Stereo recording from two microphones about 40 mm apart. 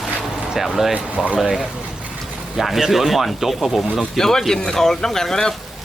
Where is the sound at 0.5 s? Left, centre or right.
Centre.